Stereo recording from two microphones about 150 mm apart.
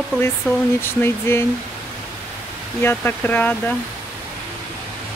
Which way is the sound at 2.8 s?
15° left (ahead or behind).